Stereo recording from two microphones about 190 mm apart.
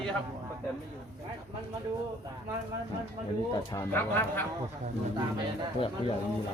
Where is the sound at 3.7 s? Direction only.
10° left (ahead or behind).